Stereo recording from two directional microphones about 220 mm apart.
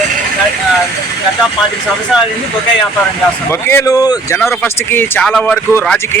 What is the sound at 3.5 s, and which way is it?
Speech, 10° left (ahead or behind).